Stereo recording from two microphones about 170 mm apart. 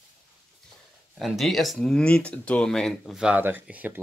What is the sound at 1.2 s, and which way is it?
Speech, centre (ahead or behind).